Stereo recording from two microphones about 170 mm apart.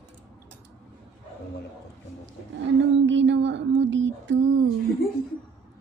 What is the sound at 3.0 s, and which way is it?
A woman's voice, 90° right.